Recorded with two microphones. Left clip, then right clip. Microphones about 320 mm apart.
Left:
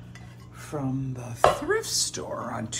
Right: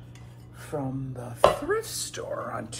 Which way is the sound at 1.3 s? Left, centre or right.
Centre.